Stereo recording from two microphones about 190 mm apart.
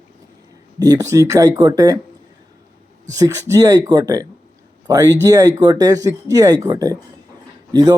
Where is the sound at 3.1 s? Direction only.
15° right (ahead or behind).